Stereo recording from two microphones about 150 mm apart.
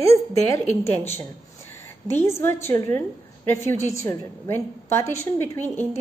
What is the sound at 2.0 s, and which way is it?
A woman's voice, 15° left (ahead or behind).